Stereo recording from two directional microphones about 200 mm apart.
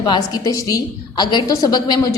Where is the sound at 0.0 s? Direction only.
20° left (ahead or behind).